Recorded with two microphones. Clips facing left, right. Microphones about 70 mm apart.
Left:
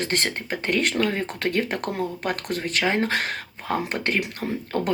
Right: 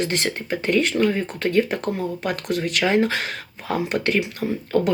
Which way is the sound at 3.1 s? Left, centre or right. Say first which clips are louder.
Even; left.